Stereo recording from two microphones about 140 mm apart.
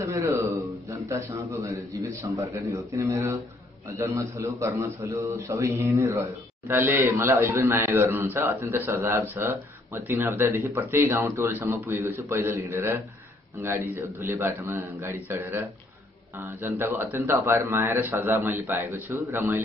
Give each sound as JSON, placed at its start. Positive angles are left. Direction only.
{"t": 0.1, "sound": "a sound", "side_deg": -20}
{"t": 1.0, "sound": "a man's voice", "side_deg": -20}
{"t": 2.3, "sound": "a man's voice", "side_deg": -35}
{"t": 3.0, "sound": "a man's voice", "side_deg": -20}